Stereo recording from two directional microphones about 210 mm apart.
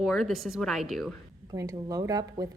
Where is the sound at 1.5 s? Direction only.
15° right (ahead or behind).